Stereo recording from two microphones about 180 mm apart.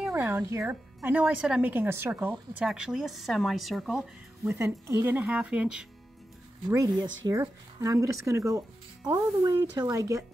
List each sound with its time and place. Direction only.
0.0 s speech: 10° right (ahead or behind)
4.6 s speech: 15° right (ahead or behind)
6.7 s speech: 20° right (ahead or behind)